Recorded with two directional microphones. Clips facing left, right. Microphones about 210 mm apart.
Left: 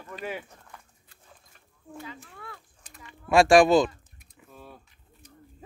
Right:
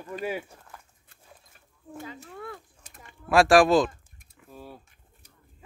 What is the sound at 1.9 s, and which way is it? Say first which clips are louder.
Speech: right 1 dB; 45° right (ahead or behind).